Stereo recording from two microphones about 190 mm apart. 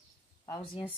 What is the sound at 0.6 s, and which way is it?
Speech, 30° left (ahead or behind).